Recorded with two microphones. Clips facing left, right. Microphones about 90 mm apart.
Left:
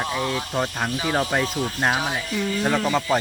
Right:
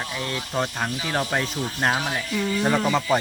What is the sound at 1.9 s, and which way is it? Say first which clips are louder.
Speech: left 1 dB; 15° left (ahead or behind).